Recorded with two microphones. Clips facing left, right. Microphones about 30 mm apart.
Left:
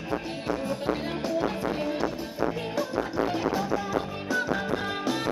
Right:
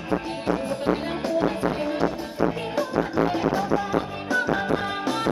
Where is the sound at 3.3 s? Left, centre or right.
Centre.